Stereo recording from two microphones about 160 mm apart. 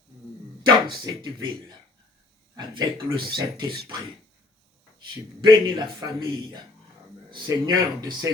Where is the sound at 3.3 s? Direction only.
30° right (ahead or behind).